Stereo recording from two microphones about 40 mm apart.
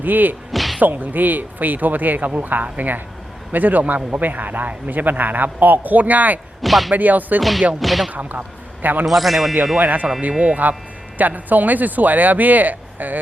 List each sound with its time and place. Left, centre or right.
0.0 s speech: right
0.5 s whack: centre
0.8 s speech: right
6.6 s speech: centre
6.9 s speech: right
7.8 s speech: centre
8.1 s a man's voice: right
9.0 s speech: centre
9.7 s speech: right